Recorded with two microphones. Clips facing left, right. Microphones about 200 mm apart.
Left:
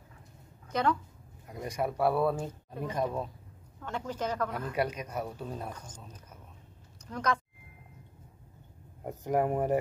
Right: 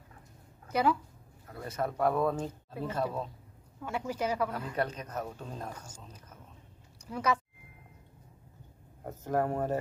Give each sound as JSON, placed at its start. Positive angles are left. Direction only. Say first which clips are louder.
{"t": 0.7, "sound": "speech", "louder": "right 1 dB", "side_deg": -10}
{"t": 1.5, "sound": "speech", "louder": "left 2 dB", "side_deg": 15}
{"t": 3.8, "sound": "a woman's voice", "louder": "right 1 dB", "side_deg": -10}
{"t": 4.7, "sound": "speech", "louder": "left 2 dB", "side_deg": 10}
{"t": 5.7, "sound": "a woman's voice", "louder": "left 1 dB", "side_deg": -10}
{"t": 7.1, "sound": "speech", "louder": "right 1 dB", "side_deg": -5}
{"t": 9.0, "sound": "speech", "louder": "left 2 dB", "side_deg": 15}